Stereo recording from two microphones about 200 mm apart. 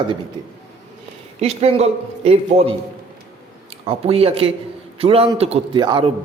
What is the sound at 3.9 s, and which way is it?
A man's voice, 30° right (ahead or behind).